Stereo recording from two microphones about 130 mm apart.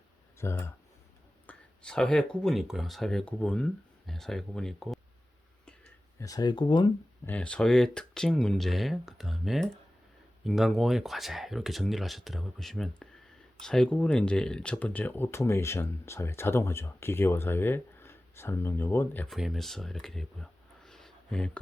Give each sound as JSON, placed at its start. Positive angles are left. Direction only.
{"t": 0.3, "sound": "speech", "side_deg": 20}
{"t": 1.5, "sound": "speech", "side_deg": 5}
{"t": 6.1, "sound": "speech", "side_deg": 30}
{"t": 7.3, "sound": "speech", "side_deg": 10}
{"t": 19.3, "sound": "speech", "side_deg": 0}